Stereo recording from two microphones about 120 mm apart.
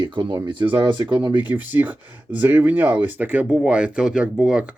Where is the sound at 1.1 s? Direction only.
15° right (ahead or behind).